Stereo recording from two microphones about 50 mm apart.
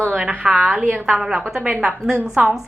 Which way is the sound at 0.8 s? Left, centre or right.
Right.